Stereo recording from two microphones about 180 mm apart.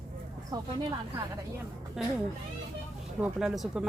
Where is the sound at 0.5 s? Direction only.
20° right (ahead or behind).